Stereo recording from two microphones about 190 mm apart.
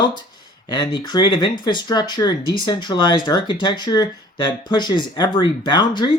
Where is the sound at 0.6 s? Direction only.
25° left (ahead or behind).